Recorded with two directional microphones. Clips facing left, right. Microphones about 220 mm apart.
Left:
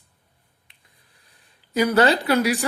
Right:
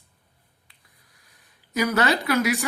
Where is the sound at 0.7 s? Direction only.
30° left (ahead or behind).